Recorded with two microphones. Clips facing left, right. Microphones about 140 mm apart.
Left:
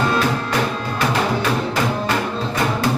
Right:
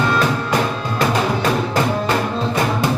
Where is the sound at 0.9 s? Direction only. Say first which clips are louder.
Right 1 dB; 45° right (ahead or behind).